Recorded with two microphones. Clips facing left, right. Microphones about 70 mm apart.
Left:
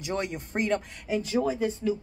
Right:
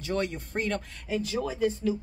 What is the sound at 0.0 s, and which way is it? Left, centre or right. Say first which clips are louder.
A woman's voice: right 1 dB; centre.